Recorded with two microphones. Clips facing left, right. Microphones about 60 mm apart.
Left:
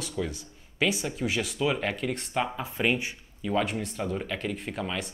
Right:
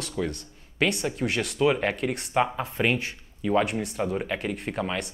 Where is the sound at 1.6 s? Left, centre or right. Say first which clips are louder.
Right 6 dB; centre.